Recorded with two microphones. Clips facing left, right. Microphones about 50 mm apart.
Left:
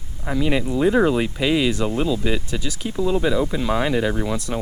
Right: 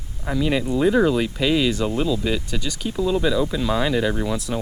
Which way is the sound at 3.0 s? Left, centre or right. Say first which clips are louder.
Even; centre.